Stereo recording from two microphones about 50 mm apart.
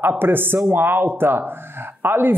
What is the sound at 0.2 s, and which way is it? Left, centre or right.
Speech, right.